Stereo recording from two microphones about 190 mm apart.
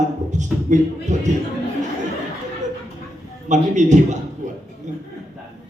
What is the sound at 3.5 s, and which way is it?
Speech, 40° right (ahead or behind).